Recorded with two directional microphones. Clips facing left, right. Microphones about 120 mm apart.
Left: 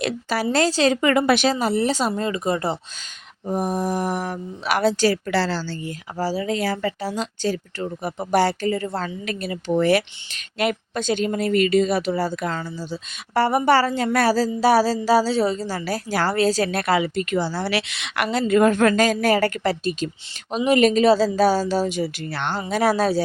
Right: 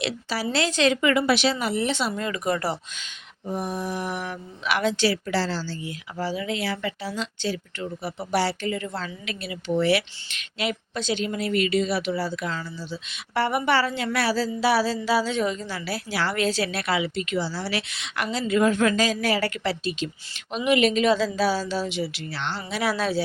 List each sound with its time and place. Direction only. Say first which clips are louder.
0.0 s speech: left 5 dB; 50° left (ahead or behind)
0.5 s speech: left 3 dB; 40° left (ahead or behind)
1.5 s speech: left 4 dB; 35° left (ahead or behind)
3.4 s speech: left 6 dB; 45° left (ahead or behind)
5.3 s a woman's voice: left 3 dB; 70° left (ahead or behind)
5.8 s speech: left 4 dB; 40° left (ahead or behind); by 17.7 s 55° left (ahead or behind)
17.7 s speech: left 5 dB; 80° left; by 23.2 s 40° left (ahead or behind)